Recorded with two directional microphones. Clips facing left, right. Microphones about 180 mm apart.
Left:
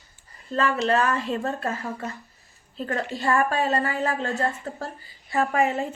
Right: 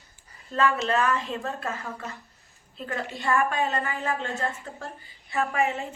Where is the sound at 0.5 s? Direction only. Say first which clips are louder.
Left 2 dB; 35° left (ahead or behind).